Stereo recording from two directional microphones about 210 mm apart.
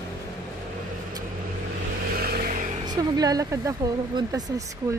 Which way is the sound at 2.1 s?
45° right (ahead or behind).